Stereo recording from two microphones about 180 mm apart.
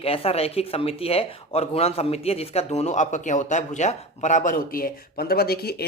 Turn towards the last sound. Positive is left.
turn(degrees=60)  # may be behind; listen again after turning